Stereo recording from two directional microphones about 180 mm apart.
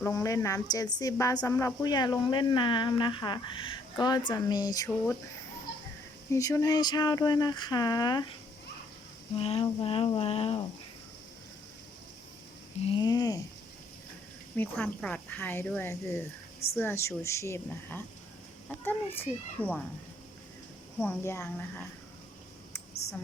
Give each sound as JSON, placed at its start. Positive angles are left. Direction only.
{"t": 0.0, "sound": "a woman's voice", "side_deg": 15}
{"t": 6.3, "sound": "a woman's voice", "side_deg": 15}
{"t": 9.3, "sound": "a sound", "side_deg": 30}
{"t": 12.8, "sound": "a woman's voice", "side_deg": 25}
{"t": 14.5, "sound": "speech", "side_deg": 10}
{"t": 21.0, "sound": "speech", "side_deg": 15}